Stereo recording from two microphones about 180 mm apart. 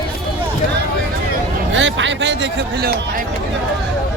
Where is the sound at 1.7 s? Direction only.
90° right.